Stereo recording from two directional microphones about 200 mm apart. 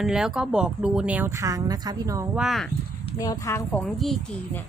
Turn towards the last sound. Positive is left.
turn(degrees=0)  # may be behind; listen again after turning